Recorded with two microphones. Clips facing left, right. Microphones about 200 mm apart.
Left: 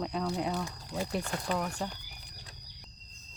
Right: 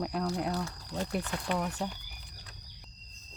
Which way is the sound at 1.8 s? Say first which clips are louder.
Right 1 dB; centre (ahead or behind).